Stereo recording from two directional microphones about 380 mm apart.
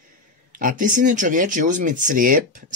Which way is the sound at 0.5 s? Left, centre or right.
Right.